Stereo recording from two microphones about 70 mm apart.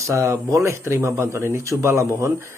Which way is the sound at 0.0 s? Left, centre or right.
Right.